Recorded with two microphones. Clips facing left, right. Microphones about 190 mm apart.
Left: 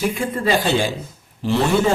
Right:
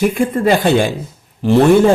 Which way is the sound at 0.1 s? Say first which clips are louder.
Right 6 dB; 55° right (ahead or behind).